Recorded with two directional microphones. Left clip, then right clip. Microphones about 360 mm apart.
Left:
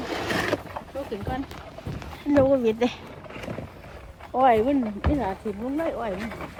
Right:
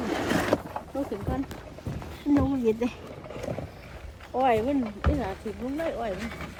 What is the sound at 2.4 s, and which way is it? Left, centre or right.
Speech, left.